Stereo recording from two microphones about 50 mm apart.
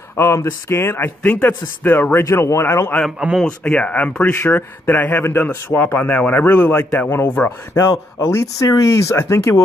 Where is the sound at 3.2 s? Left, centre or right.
Right.